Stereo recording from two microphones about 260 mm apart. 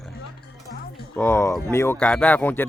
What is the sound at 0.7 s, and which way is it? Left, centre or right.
Music, left.